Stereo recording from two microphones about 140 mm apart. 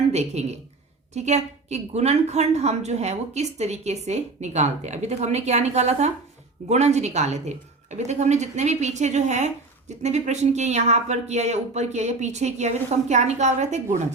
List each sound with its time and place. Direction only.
0.1 s a woman's voice: 50° right (ahead or behind)